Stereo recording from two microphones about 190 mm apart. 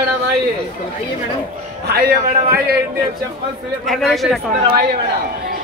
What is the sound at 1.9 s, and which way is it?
Speech, 55° right (ahead or behind).